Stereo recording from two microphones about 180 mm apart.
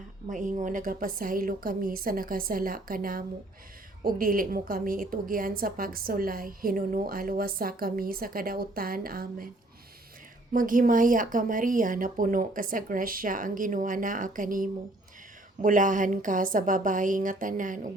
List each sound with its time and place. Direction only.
0.3 s a woman's voice: 45° right (ahead or behind)
10.5 s a woman's voice: 50° right (ahead or behind)